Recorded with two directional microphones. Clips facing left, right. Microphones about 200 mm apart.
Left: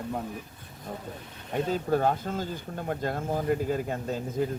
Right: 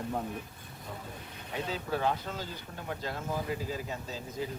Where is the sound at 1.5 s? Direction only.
50° left (ahead or behind).